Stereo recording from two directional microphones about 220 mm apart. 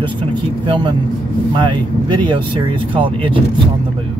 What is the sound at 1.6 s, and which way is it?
Speech, 20° right (ahead or behind).